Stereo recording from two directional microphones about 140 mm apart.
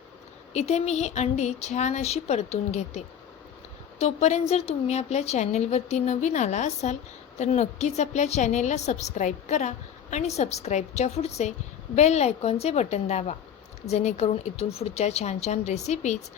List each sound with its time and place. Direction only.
0.5 s a woman's voice: 50° left (ahead or behind)